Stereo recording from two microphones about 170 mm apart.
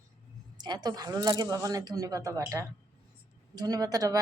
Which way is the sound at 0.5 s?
25° right (ahead or behind).